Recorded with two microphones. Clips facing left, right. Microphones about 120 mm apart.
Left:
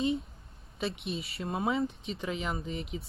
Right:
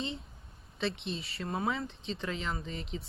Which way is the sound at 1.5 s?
15° left (ahead or behind).